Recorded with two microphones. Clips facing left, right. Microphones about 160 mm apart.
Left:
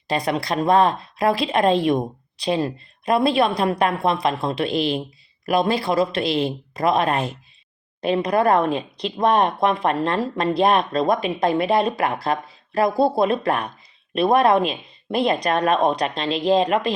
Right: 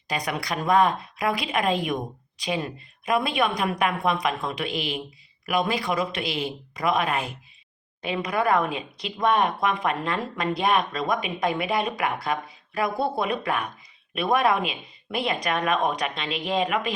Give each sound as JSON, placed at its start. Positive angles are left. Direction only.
{"t": 0.1, "sound": "speech", "side_deg": 30}